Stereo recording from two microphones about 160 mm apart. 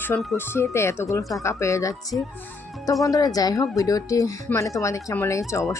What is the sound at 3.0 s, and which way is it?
Speech, 20° left (ahead or behind).